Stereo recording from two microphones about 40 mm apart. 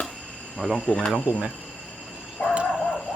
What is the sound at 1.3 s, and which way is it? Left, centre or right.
Speech, right.